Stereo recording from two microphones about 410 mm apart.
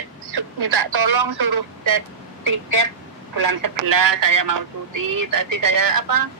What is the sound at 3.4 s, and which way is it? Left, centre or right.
Speech, right.